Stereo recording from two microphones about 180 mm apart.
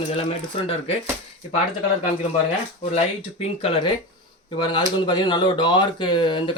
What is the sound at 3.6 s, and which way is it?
Speech, 30° left (ahead or behind).